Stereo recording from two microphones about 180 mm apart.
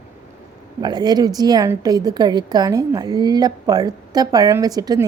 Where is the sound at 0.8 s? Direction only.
25° right (ahead or behind).